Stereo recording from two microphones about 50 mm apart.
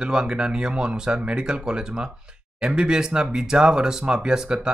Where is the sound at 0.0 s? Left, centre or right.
Centre.